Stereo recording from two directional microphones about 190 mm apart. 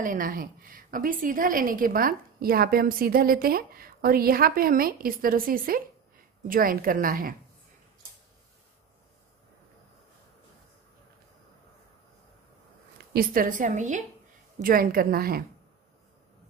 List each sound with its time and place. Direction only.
0.0 s a woman's voice: 45° right (ahead or behind)
12.9 s a woman's voice: 55° right (ahead or behind)